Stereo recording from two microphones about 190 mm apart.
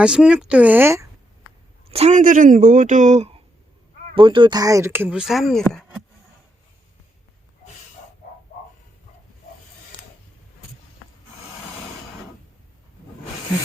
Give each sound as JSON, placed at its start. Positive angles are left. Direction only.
{"t": 0.0, "sound": "speech", "side_deg": -5}
{"t": 1.9, "sound": "speech", "side_deg": -35}
{"t": 4.1, "sound": "speech", "side_deg": -25}